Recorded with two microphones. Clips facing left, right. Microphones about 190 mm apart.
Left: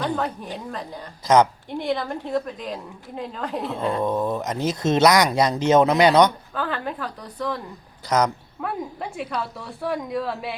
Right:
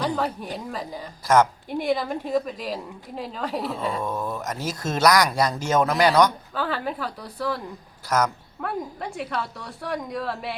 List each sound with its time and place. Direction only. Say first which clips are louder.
0.0 s a woman's voice: even; centre (ahead or behind)
4.0 s speech: left 5 dB; 20° left (ahead or behind)
6.5 s a woman's voice: even; 5° right (ahead or behind)
8.6 s a woman's voice: left 1 dB; centre (ahead or behind)